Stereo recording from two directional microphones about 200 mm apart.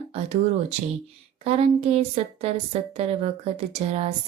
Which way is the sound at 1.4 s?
30° right (ahead or behind).